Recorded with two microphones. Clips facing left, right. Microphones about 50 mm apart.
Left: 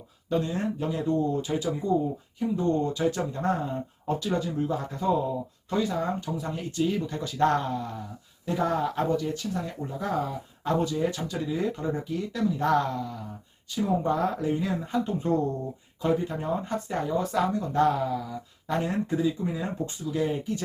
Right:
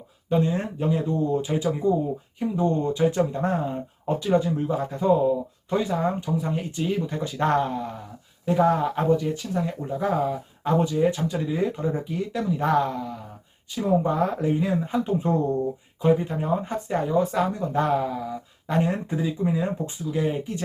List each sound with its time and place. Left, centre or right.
0.3 s speech: right